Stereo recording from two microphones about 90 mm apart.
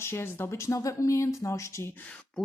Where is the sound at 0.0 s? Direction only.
30° left (ahead or behind).